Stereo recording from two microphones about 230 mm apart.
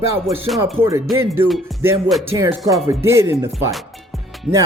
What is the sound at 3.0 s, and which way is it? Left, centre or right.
Speech, centre.